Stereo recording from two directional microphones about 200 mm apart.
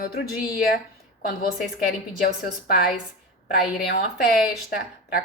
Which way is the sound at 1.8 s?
50° left (ahead or behind).